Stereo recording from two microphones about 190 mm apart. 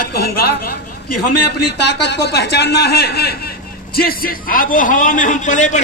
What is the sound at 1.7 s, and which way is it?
A man's voice, 60° left (ahead or behind).